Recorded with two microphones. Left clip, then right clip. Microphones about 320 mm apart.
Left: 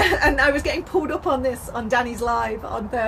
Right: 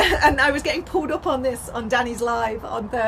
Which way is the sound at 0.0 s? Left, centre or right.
Left.